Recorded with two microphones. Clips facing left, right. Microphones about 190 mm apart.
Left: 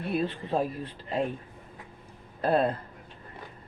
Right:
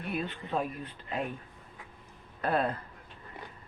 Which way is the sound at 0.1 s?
35° left (ahead or behind).